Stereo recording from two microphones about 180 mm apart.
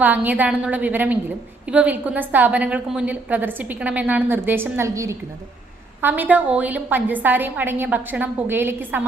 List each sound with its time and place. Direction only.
0.0 s a woman's voice: 10° right (ahead or behind)